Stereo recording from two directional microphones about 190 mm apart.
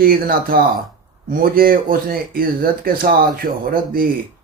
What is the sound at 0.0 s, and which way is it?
Speech, 50° right (ahead or behind).